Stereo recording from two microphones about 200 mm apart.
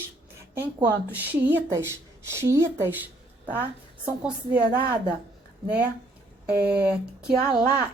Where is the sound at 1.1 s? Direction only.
10° right (ahead or behind).